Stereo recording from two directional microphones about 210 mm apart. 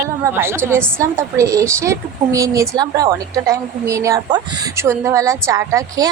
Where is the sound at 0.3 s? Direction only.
10° right (ahead or behind).